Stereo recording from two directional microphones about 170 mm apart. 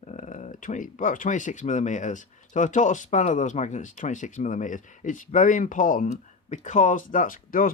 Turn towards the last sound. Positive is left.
turn(degrees=55)  # may be behind; listen again after turning